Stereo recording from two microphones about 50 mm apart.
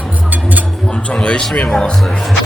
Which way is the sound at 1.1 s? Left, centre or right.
Centre.